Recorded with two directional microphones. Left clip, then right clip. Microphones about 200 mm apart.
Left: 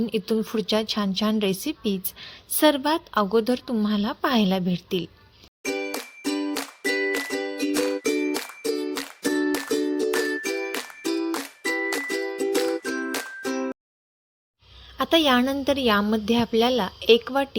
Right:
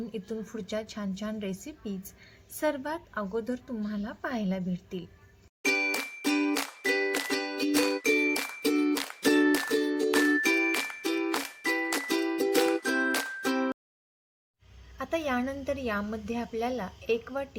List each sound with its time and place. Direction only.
0.1 s a woman's voice: 40° left (ahead or behind)
5.6 s music: 5° left (ahead or behind)
14.9 s a woman's voice: 45° left (ahead or behind)